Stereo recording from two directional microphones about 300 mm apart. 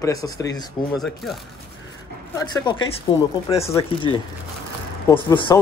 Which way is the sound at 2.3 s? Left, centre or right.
Centre.